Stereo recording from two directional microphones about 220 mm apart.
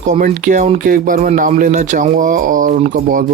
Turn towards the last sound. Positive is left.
turn(degrees=-40)  # may be behind; listen again after turning